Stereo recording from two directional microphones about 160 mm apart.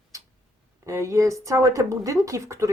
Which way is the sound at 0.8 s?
20° right (ahead or behind).